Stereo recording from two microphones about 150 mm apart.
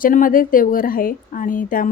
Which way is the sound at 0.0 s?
65° left (ahead or behind).